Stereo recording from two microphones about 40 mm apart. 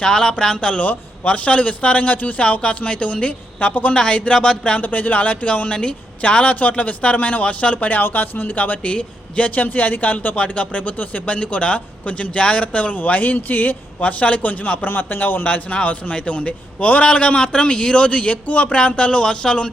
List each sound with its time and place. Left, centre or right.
0.0 s a man's voice: centre
0.9 s a man's voice: left
3.9 s a man's voice: left
4.8 s a man's voice: left
5.6 s a man's voice: left
7.9 s speech: left
8.9 s a man's voice: left
9.6 s a man's voice: left
10.9 s speech: left
11.3 s a man's voice: left
14.8 s a man's voice: left
15.4 s a man's voice: left